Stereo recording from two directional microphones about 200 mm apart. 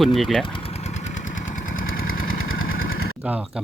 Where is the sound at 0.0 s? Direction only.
Centre (ahead or behind).